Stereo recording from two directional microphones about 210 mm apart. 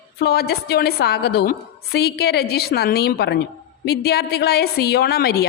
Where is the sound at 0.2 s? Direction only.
50° left (ahead or behind).